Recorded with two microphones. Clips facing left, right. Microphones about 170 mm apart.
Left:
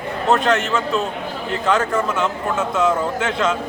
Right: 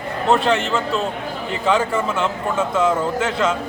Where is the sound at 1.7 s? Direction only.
10° right (ahead or behind).